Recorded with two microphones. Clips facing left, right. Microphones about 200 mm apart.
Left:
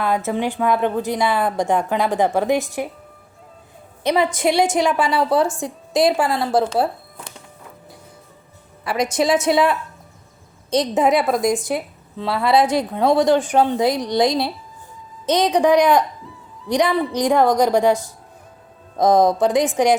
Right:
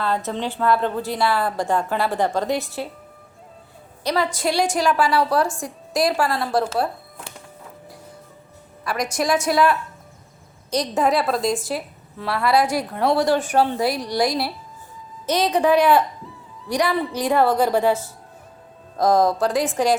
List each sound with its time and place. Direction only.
0.3 s a woman's voice: 15° left (ahead or behind)
4.0 s a woman's voice: 20° left (ahead or behind)
8.8 s a woman's voice: 25° left (ahead or behind)